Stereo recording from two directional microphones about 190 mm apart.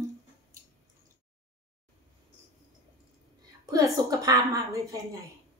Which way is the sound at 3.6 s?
15° right (ahead or behind).